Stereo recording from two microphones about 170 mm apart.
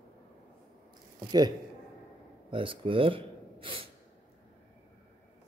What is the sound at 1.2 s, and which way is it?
Speech, 25° right (ahead or behind).